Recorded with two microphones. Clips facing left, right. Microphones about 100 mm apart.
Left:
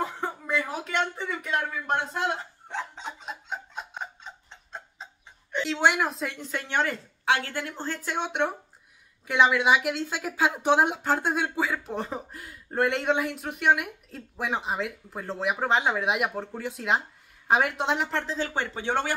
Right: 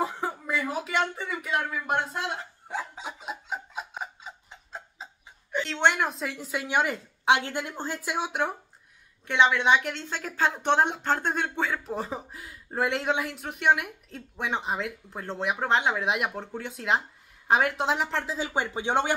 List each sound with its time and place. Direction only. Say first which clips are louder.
0.0 s speech: right 1 dB; 5° right (ahead or behind)
2.7 s a sound: even; 5° right (ahead or behind)
9.3 s speech: even; 5° left (ahead or behind); by 19.1 s 15° right (ahead or behind)